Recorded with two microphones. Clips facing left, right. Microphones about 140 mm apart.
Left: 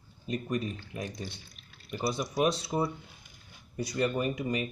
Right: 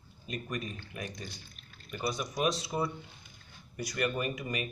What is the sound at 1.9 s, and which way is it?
Speech, 30° left (ahead or behind).